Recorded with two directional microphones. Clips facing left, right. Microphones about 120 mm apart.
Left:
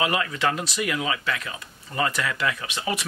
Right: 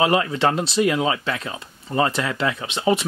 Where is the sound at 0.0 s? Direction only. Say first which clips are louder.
Right 6 dB; 30° right (ahead or behind).